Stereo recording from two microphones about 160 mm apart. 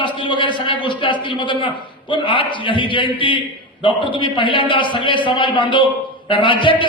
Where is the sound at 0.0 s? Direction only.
30° left (ahead or behind).